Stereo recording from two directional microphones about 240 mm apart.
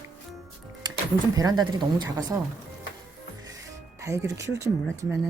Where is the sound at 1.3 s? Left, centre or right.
Centre.